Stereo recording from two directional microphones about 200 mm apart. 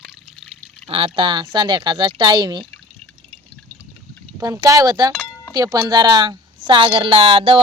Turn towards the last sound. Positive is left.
turn(degrees=-25)  # may be behind; listen again after turning